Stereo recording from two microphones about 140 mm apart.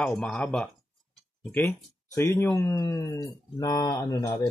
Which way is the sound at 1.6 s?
20° left (ahead or behind).